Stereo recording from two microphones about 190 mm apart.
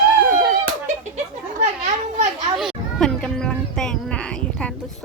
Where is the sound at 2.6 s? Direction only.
5° left (ahead or behind).